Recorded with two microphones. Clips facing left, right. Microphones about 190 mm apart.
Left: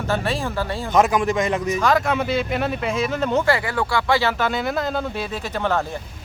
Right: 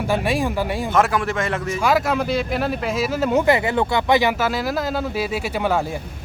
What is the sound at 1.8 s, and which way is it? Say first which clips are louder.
Speech: right 3 dB; 5° right (ahead or behind).